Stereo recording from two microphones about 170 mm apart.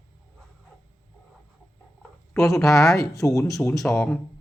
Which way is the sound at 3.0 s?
20° left (ahead or behind).